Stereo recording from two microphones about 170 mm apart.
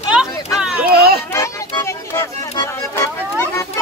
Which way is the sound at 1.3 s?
15° left (ahead or behind).